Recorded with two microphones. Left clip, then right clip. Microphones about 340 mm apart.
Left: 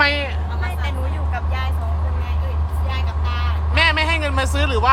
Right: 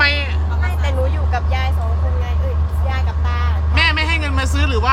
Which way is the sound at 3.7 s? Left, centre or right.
Centre.